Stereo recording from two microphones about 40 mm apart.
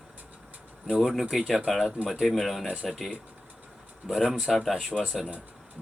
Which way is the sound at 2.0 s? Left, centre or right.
Right.